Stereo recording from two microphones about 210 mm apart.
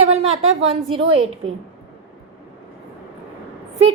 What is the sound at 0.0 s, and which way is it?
A woman's voice, 30° right (ahead or behind).